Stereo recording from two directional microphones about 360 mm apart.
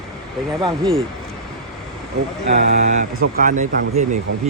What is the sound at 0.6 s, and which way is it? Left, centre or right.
Speech, centre.